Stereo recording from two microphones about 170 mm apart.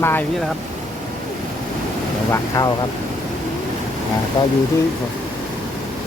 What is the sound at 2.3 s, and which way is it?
Speech, 20° left (ahead or behind).